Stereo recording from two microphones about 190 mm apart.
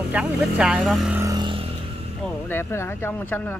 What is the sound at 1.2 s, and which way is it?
Vehicle, 20° right (ahead or behind).